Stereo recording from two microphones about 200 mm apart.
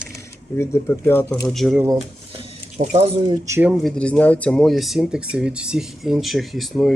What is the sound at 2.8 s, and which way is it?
Speech, 30° right (ahead or behind).